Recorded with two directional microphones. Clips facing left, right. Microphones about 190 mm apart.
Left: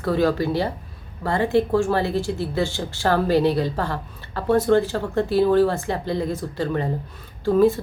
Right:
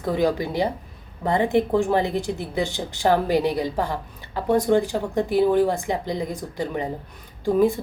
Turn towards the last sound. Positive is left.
turn(degrees=-15)  # may be behind; listen again after turning